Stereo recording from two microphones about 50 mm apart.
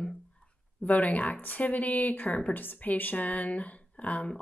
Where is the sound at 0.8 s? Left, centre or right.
Left.